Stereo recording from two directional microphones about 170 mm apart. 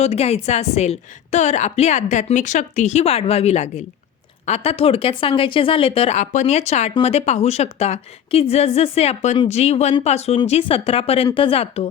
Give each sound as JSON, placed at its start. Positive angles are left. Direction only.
{"t": 0.0, "sound": "a woman's voice", "side_deg": 40}